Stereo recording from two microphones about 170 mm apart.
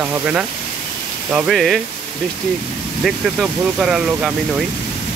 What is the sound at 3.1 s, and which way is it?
Speech, centre (ahead or behind).